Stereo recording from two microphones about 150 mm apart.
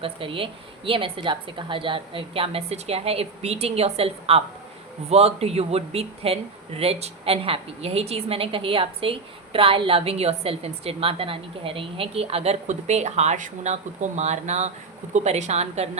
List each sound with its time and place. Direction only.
0.0 s a woman's voice: 35° right (ahead or behind)